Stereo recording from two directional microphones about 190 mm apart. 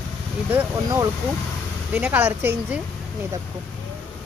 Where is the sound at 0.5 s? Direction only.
20° right (ahead or behind).